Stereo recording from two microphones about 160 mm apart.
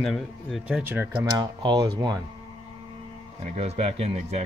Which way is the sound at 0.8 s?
15° right (ahead or behind).